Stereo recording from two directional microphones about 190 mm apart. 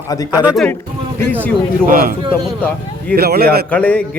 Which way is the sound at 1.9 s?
50° right (ahead or behind).